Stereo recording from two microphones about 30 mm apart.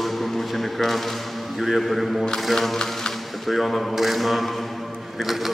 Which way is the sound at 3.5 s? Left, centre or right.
Centre.